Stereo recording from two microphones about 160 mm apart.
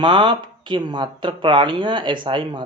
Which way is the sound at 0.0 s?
30° right (ahead or behind).